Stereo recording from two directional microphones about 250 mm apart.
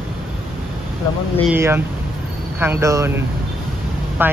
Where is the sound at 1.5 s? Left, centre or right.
Centre.